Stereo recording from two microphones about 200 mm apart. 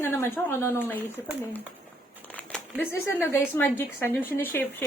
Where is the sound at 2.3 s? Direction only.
10° left (ahead or behind).